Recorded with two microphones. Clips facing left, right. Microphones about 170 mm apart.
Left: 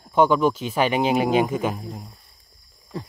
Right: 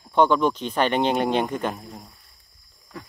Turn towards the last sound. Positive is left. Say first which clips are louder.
# left 6 dB
turn(degrees=30)  # may be behind; listen again after turning